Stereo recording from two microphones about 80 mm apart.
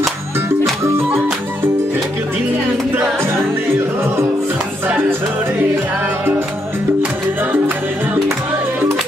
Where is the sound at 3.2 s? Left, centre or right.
Right.